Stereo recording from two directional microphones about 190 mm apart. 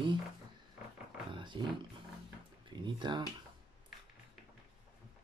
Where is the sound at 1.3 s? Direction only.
25° right (ahead or behind).